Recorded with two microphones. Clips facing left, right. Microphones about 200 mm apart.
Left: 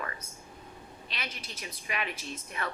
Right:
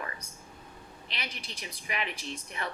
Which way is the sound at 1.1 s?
15° right (ahead or behind).